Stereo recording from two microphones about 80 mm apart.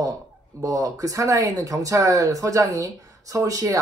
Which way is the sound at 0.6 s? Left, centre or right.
Right.